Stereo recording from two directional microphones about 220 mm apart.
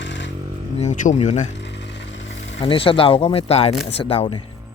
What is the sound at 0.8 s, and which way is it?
Speech, 30° left (ahead or behind).